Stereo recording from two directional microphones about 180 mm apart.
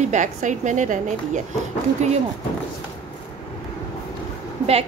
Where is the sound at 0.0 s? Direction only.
45° right (ahead or behind).